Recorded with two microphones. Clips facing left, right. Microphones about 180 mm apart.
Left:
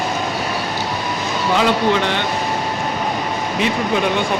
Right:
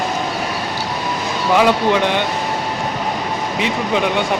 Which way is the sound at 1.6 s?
15° right (ahead or behind).